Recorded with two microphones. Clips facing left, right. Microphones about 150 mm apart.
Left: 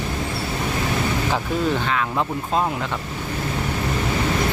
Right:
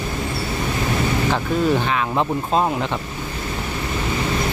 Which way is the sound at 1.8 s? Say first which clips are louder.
Right 2 dB; 20° right (ahead or behind).